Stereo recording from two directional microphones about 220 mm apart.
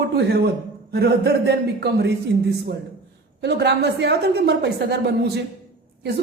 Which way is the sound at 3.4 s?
50° right (ahead or behind).